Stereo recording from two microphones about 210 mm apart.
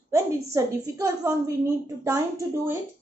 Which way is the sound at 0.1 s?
15° right (ahead or behind).